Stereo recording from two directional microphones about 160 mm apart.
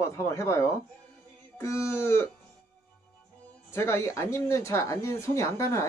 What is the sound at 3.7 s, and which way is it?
Speech, 15° left (ahead or behind).